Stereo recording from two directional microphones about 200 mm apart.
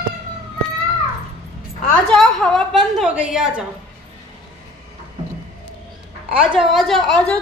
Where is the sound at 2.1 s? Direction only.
Centre (ahead or behind).